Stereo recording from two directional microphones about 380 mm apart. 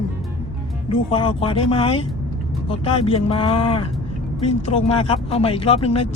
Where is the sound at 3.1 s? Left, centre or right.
Centre.